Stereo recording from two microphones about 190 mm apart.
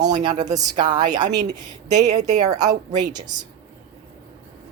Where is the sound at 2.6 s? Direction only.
20° right (ahead or behind).